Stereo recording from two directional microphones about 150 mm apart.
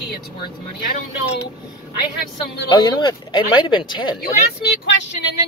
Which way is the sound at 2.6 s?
30° left (ahead or behind).